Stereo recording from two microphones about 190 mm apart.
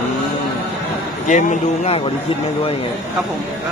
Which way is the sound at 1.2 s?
40° left (ahead or behind).